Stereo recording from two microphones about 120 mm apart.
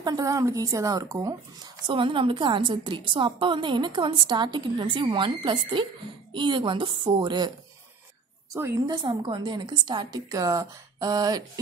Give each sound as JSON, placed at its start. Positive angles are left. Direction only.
{"t": 0.0, "sound": "a woman's voice", "side_deg": -30}
{"t": 1.9, "sound": "a woman's voice", "side_deg": -45}
{"t": 8.8, "sound": "a woman's voice", "side_deg": -40}